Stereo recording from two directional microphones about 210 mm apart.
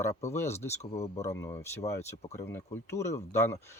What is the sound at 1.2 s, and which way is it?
Speech, 15° left (ahead or behind).